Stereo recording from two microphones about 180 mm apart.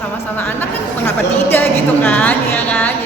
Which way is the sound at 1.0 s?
10° left (ahead or behind).